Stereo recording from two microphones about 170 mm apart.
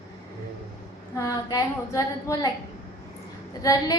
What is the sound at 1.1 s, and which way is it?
A woman's voice, 20° left (ahead or behind).